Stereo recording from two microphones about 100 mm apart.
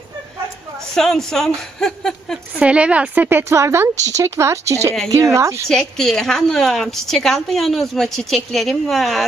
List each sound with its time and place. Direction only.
0.9 s a woman's voice: 5° left (ahead or behind)
2.6 s a woman's voice: 10° right (ahead or behind); by 5.7 s 30° right (ahead or behind)
5.7 s a woman's voice: 5° left (ahead or behind)